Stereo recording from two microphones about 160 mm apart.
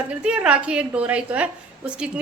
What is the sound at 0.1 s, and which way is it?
A woman's voice, 10° right (ahead or behind).